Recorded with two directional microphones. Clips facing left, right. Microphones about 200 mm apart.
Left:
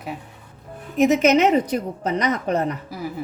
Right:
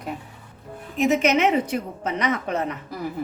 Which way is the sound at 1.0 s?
40° left (ahead or behind).